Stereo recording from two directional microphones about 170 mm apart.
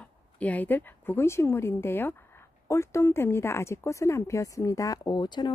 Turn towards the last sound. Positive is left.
turn(degrees=25)  # may be behind; listen again after turning